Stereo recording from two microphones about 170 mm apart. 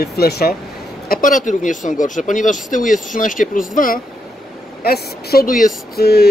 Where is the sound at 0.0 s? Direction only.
70° left (ahead or behind); by 4.0 s 55° left (ahead or behind).